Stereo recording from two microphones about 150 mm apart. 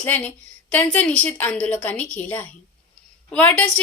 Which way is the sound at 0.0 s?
10° left (ahead or behind).